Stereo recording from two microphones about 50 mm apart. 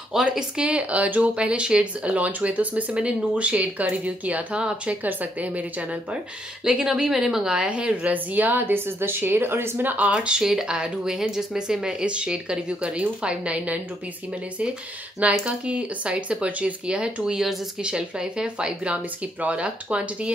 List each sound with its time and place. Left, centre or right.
0.1 s speech: centre; by 5.9 s right
6.6 s a woman's voice: centre; by 9.9 s right
9.9 s speech: right
15.4 s speech: right